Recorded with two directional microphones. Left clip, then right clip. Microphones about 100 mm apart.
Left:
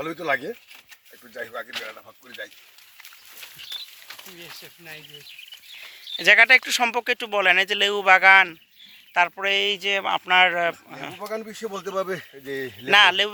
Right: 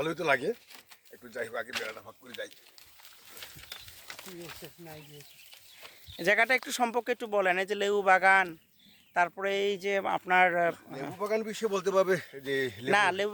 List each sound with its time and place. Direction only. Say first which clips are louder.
0.0 s speech: left 2 dB; 55° right (ahead or behind)
1.3 s speech: left 3 dB; 40° right (ahead or behind)
6.1 s speech: left 11 dB; 20° right (ahead or behind); by 8.5 s centre (ahead or behind)
9.4 s speech: left 8 dB; 25° right (ahead or behind)
11.2 s speech: right 2 dB; 50° right (ahead or behind); by 12.9 s 35° right (ahead or behind)
12.9 s speech: left 10 dB; 15° right (ahead or behind)